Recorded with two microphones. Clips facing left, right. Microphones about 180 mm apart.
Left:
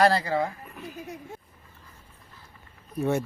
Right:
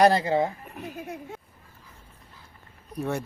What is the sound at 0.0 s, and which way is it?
Speech, 20° right (ahead or behind).